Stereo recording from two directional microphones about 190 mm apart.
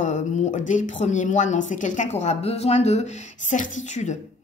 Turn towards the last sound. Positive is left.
turn(degrees=40)  # may be behind; listen again after turning